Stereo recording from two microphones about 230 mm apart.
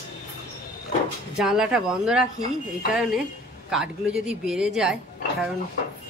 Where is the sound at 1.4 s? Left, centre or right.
Centre.